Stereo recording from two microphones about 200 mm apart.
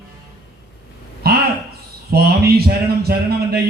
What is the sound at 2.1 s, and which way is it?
Speech, 50° right (ahead or behind).